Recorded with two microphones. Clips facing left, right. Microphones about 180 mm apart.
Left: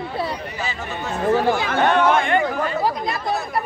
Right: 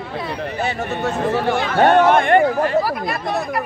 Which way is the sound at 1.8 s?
50° right (ahead or behind).